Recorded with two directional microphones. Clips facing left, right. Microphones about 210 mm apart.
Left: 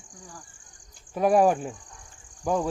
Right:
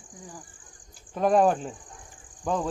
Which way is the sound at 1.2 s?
10° left (ahead or behind).